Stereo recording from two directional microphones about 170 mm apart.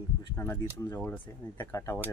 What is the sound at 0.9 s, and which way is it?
Speech, 10° left (ahead or behind).